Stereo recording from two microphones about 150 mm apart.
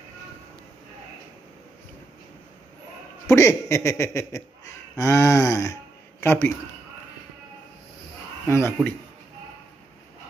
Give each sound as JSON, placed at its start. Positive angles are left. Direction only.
{"t": 3.3, "sound": "speech", "side_deg": 20}
{"t": 8.5, "sound": "speech", "side_deg": 15}